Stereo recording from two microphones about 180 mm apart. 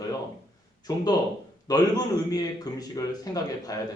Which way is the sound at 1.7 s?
20° left (ahead or behind).